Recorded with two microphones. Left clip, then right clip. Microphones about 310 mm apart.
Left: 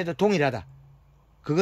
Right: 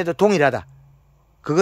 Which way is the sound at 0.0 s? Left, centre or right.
Centre.